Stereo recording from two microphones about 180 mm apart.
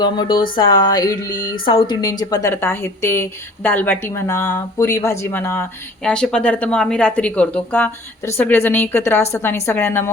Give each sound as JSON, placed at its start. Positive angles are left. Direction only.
{"t": 0.0, "sound": "speech", "side_deg": 25}